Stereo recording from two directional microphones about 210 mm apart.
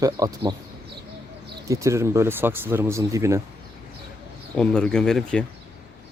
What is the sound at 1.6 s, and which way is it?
Speech, 15° right (ahead or behind).